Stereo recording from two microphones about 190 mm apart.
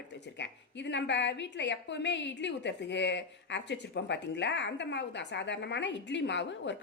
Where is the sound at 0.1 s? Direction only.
65° left (ahead or behind).